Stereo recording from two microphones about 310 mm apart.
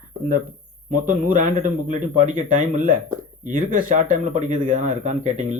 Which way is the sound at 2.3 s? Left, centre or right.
Right.